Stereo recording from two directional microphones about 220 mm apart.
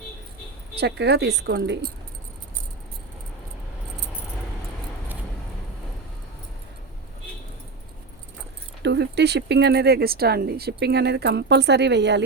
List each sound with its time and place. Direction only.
0.8 s speech: 50° right (ahead or behind)
8.8 s speech: 50° right (ahead or behind)